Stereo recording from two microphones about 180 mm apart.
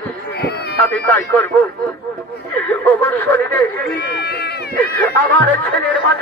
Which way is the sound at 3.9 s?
65° left (ahead or behind).